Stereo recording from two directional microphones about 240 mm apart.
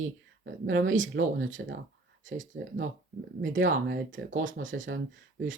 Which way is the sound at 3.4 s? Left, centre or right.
Right.